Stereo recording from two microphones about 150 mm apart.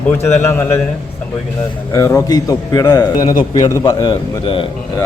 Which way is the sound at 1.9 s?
20° left (ahead or behind).